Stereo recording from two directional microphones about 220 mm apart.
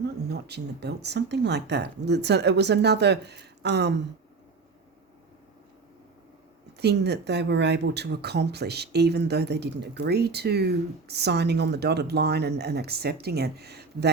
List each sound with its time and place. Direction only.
0.0 s speech: 50° right (ahead or behind)
6.7 s speech: 50° right (ahead or behind)